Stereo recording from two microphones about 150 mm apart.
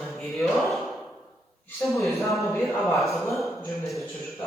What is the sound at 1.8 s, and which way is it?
Speech, centre (ahead or behind).